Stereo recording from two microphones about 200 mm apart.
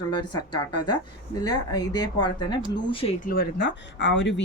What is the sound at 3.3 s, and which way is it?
Speech, 55° left (ahead or behind).